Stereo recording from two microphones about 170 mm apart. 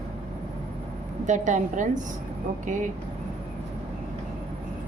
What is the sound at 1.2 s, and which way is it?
A woman's voice, 45° right (ahead or behind).